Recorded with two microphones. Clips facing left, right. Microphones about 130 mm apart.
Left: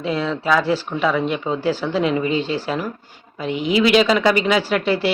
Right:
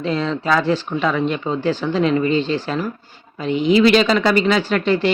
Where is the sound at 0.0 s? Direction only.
10° left (ahead or behind).